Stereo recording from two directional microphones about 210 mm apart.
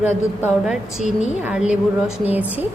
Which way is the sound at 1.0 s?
35° left (ahead or behind).